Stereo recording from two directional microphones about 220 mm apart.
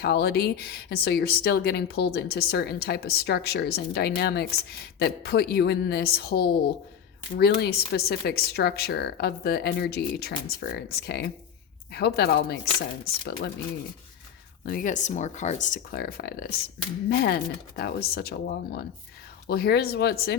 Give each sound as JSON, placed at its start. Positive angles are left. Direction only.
{"t": 0.0, "sound": "a woman's voice", "side_deg": 50}
{"t": 14.6, "sound": "a woman's voice", "side_deg": 40}